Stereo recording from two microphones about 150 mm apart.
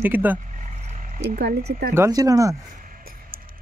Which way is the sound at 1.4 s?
90° right.